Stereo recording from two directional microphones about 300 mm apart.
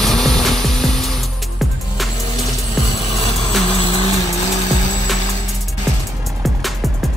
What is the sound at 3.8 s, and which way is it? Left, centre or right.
Vehicle, centre.